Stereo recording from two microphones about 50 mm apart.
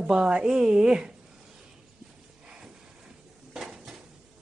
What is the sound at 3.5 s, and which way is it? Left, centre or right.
Dishes, centre.